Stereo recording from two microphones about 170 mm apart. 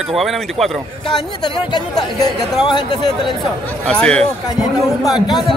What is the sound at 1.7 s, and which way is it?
Speech, 25° left (ahead or behind).